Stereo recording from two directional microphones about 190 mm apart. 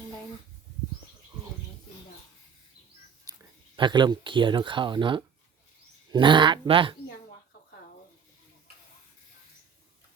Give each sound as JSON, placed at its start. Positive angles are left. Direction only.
{"t": 3.8, "sound": "speech", "side_deg": -25}